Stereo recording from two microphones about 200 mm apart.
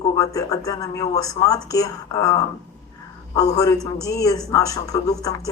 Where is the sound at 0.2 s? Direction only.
15° left (ahead or behind).